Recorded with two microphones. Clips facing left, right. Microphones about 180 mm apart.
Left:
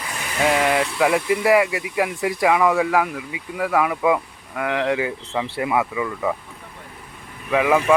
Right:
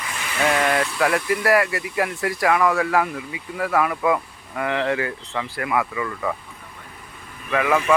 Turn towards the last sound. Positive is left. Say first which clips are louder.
# left 3 dB
turn(degrees=15)  # may be behind; listen again after turning